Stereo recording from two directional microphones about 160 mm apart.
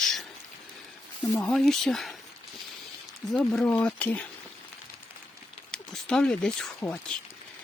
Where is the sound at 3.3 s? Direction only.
5° left (ahead or behind).